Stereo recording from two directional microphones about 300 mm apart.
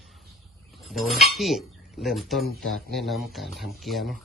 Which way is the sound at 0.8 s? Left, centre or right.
Centre.